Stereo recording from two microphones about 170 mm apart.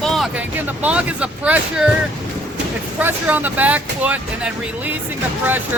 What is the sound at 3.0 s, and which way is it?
Speech, 10° right (ahead or behind).